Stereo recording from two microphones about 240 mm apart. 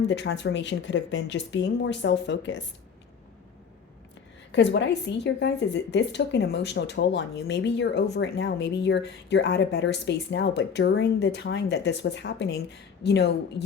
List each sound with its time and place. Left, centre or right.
0.1 s a woman's voice: left
4.5 s a woman's voice: left